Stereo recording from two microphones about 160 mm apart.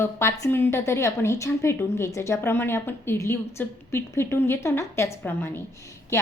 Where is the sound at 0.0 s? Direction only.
15° left (ahead or behind).